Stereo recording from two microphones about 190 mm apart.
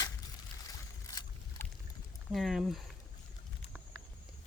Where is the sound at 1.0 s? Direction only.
20° left (ahead or behind).